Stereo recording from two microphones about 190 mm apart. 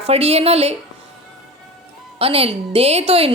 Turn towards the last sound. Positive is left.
turn(degrees=-30)  # may be behind; listen again after turning